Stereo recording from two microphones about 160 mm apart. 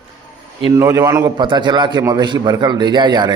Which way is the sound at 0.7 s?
20° right (ahead or behind).